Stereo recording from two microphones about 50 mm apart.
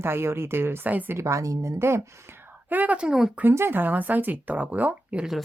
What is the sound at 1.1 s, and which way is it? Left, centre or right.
Speech, right.